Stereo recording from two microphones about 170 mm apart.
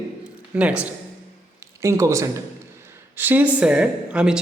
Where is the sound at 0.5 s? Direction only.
5° right (ahead or behind).